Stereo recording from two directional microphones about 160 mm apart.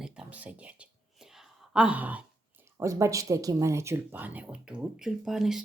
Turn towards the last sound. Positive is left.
turn(degrees=0)  # may be behind; listen again after turning